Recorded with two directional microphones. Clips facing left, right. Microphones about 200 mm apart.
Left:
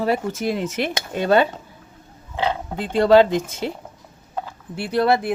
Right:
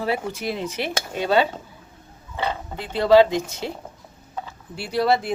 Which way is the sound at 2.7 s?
50° left (ahead or behind).